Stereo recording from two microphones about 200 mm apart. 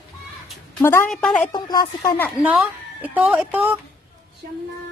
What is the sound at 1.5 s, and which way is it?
Speech, 20° left (ahead or behind).